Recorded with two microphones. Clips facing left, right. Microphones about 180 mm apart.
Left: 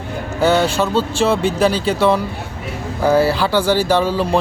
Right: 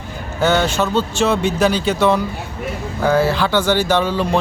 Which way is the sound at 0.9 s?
35° left (ahead or behind).